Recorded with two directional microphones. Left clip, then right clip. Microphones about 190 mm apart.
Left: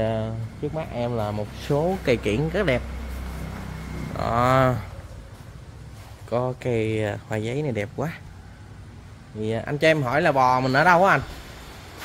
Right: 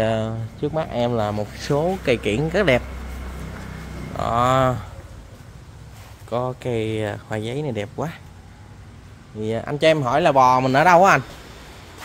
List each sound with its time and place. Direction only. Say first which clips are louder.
0.0 s speech: right 4 dB; 30° right (ahead or behind); by 2.4 s 5° right (ahead or behind)
2.5 s speech: right 7 dB; 25° right (ahead or behind)
4.2 s speech: right 2 dB; centre (ahead or behind)
6.3 s speech: right 1 dB; centre (ahead or behind)
9.4 s speech: right 2 dB; 15° right (ahead or behind)